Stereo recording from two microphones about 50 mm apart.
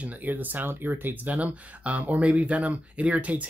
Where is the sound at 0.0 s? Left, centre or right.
Right.